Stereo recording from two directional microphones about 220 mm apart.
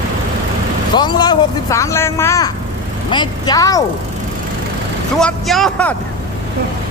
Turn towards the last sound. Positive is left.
turn(degrees=5)  # may be behind; listen again after turning